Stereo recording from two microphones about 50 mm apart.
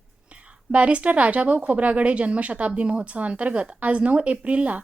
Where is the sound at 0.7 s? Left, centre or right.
Right.